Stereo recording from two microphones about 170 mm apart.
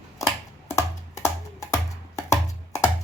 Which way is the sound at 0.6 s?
20° left (ahead or behind).